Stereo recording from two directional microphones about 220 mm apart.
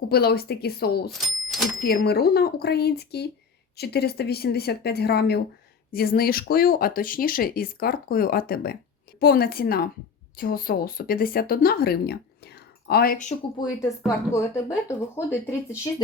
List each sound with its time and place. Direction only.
0.1 s speech: 45° left (ahead or behind)
1.2 s speech: centre (ahead or behind)
1.8 s speech: 45° left (ahead or behind)
14.3 s speech: 10° left (ahead or behind)